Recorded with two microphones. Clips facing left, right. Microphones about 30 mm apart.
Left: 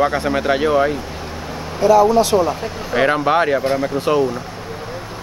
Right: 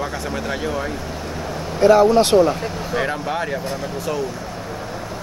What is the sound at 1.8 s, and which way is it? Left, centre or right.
Speech, right.